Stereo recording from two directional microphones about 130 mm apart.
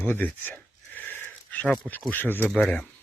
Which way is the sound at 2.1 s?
15° left (ahead or behind).